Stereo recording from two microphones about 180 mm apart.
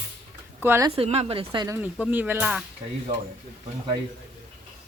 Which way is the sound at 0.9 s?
35° right (ahead or behind).